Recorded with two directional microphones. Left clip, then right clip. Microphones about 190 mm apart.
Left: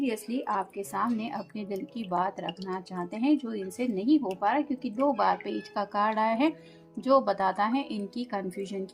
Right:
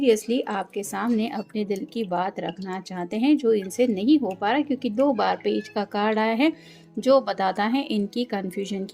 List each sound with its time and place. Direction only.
0.0 s speech: 50° right (ahead or behind)